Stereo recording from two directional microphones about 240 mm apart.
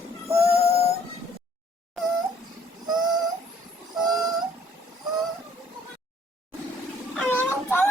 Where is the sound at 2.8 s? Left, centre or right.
Centre.